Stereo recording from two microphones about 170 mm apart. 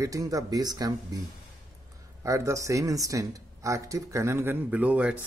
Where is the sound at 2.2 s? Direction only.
20° right (ahead or behind).